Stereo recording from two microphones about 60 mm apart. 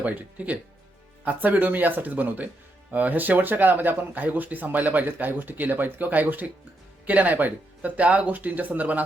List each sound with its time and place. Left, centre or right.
0.0 s speech: right